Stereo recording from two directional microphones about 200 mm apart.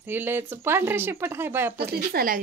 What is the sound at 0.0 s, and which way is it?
Speech, 10° right (ahead or behind).